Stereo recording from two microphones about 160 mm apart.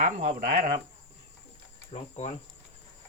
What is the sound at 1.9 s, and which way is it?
Speech, 50° left (ahead or behind).